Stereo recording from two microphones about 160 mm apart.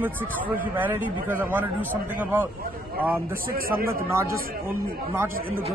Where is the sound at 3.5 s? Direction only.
65° right (ahead or behind).